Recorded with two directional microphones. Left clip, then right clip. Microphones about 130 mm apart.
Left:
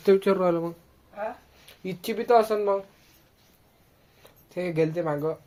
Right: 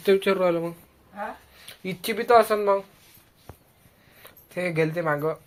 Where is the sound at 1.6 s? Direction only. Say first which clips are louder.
Right 3 dB; 10° left (ahead or behind).